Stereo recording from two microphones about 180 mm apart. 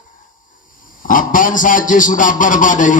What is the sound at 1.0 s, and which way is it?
A man's voice, 50° left (ahead or behind).